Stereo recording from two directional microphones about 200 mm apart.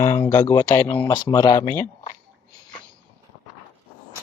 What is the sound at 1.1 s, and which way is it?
Speech, 20° left (ahead or behind).